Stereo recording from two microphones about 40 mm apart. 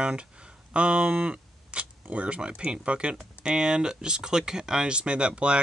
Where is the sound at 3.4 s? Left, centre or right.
Centre.